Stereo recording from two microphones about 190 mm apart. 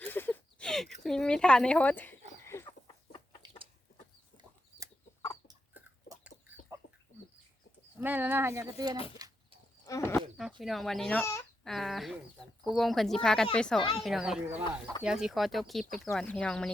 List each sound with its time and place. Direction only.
0.1 s a sound: 10° left (ahead or behind)
2.4 s chicken: 15° left (ahead or behind)
5.7 s a sound: 10° right (ahead or behind)
6.8 s chicken: 70° left (ahead or behind)
8.0 s speech: 10° right (ahead or behind)
9.1 s a sound: 20° right (ahead or behind)
9.8 s speech: 15° left (ahead or behind)
10.2 s speech: centre (ahead or behind)
11.6 s speech: centre (ahead or behind)